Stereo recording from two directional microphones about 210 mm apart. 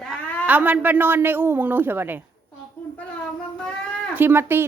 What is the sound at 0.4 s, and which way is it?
Speech, 5° right (ahead or behind).